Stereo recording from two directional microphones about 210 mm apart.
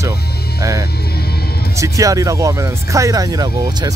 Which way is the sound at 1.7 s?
15° right (ahead or behind).